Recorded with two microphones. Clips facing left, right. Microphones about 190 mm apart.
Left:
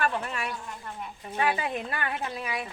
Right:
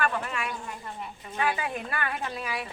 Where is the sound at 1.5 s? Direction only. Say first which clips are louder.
Left 1 dB; 25° left (ahead or behind).